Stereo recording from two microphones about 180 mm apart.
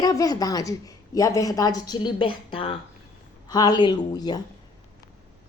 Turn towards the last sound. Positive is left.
turn(degrees=20)  # may be behind; listen again after turning